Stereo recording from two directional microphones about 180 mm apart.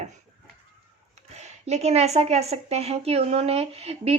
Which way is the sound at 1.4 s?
40° right (ahead or behind).